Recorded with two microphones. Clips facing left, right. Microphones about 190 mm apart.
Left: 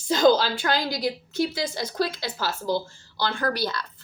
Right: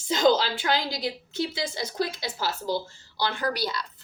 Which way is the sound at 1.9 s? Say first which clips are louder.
Left 2 dB; 20° right (ahead or behind).